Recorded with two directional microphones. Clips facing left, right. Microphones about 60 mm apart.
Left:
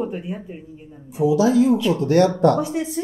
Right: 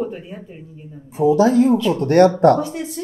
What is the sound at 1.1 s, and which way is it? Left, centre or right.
Speech, right.